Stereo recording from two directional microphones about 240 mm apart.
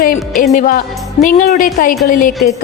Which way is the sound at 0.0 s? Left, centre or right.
Left.